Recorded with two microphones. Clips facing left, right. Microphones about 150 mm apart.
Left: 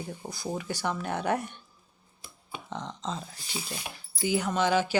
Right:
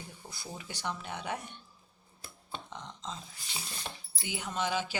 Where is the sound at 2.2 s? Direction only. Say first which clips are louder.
Left 1 dB; 5° left (ahead or behind).